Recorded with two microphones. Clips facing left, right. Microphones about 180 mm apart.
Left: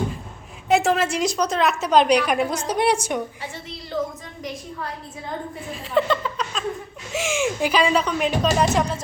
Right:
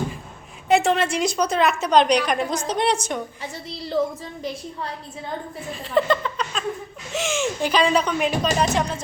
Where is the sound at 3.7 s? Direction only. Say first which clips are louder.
Right 4 dB; 35° right (ahead or behind).